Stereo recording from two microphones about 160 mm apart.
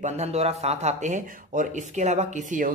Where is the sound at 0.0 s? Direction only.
40° right (ahead or behind).